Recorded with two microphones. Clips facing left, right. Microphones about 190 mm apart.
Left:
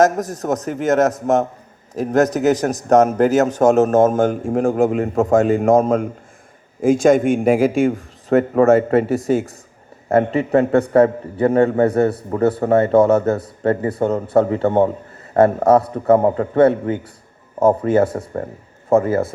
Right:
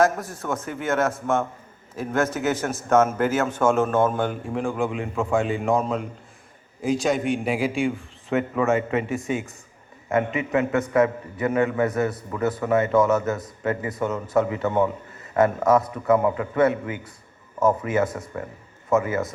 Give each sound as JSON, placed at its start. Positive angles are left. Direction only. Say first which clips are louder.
{"t": 0.0, "sound": "a man's voice", "louder": "left 5 dB", "side_deg": 40}